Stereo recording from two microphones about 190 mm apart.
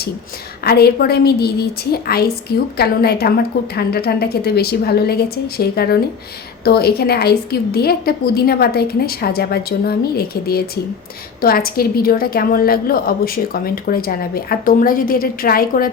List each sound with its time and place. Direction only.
0.6 s a woman's voice: 55° left (ahead or behind)